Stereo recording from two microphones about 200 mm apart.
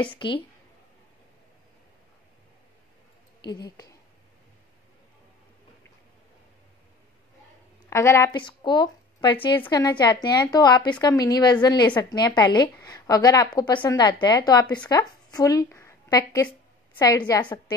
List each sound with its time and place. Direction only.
0.2 s a woman's voice: 25° left (ahead or behind)
3.4 s a woman's voice: 20° left (ahead or behind)
7.8 s a woman's voice: 15° left (ahead or behind)